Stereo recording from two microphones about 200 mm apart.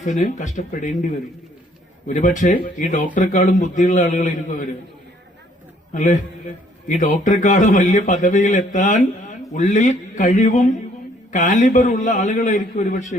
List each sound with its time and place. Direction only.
0.0 s a man's voice: 40° left (ahead or behind)
2.0 s a man's voice: 40° left (ahead or behind)
5.9 s a man's voice: 40° left (ahead or behind)